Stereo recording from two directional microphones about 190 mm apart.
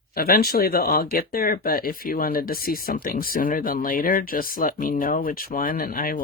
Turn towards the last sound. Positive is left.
turn(degrees=50)  # may be behind; listen again after turning